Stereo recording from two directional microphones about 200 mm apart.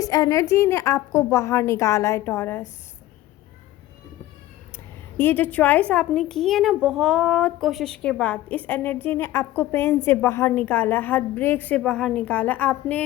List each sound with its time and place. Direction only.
0.0 s a woman's voice: 15° left (ahead or behind)
5.1 s a woman's voice: 10° left (ahead or behind)